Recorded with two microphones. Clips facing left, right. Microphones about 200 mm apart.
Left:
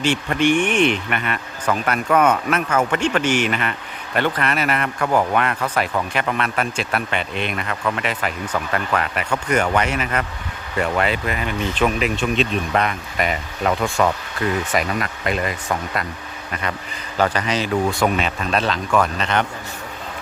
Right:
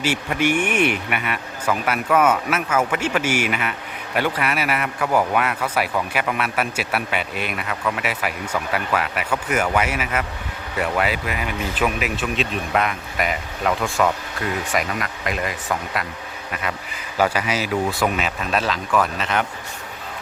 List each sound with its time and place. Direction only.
0.0 s speech: 10° right (ahead or behind)
17.2 s speech: 10° right (ahead or behind)